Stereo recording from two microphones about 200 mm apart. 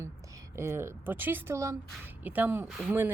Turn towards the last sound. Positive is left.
turn(degrees=-5)  # may be behind; listen again after turning